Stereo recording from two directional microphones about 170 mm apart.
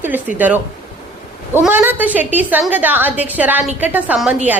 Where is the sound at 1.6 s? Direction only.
10° right (ahead or behind).